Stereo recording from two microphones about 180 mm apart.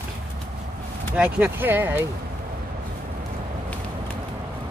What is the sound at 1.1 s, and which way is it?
Speech, 5° right (ahead or behind).